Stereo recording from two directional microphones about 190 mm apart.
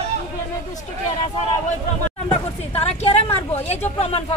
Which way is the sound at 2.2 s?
30° left (ahead or behind).